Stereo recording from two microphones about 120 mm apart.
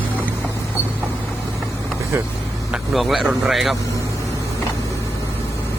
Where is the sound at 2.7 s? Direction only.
5° right (ahead or behind).